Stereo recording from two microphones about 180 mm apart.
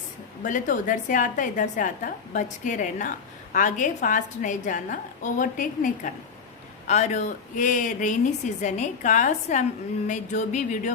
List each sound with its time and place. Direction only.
0.4 s a woman's voice: 45° left (ahead or behind)